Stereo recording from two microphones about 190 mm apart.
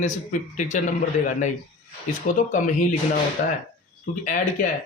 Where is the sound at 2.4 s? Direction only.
40° left (ahead or behind).